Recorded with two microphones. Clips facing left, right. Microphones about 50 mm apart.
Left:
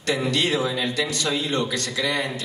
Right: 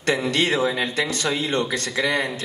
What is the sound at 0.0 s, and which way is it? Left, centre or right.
A man's voice, right.